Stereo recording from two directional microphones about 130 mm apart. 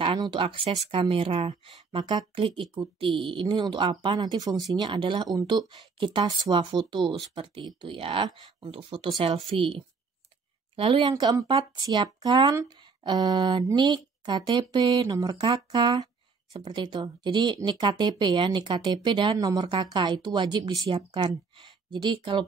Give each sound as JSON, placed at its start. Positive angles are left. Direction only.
{"t": 0.2, "sound": "speech", "side_deg": -35}
{"t": 10.8, "sound": "speech", "side_deg": -45}